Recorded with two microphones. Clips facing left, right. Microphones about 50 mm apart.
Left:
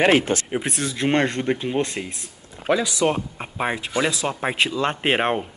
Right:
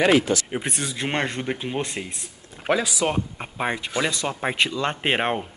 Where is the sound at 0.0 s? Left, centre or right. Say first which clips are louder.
Left 1 dB; left.